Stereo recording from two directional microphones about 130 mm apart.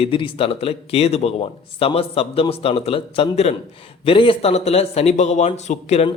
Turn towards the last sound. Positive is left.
turn(degrees=55)  # may be behind; listen again after turning